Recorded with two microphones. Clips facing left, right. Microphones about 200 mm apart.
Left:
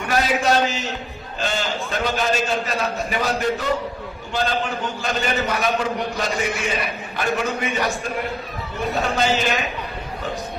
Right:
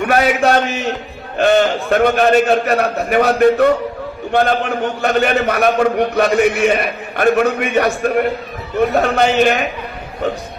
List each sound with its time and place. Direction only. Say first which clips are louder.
0.1 s a man's voice: right 5 dB; 60° right (ahead or behind)